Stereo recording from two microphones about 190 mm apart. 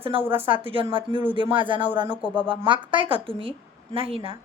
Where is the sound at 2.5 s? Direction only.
25° right (ahead or behind).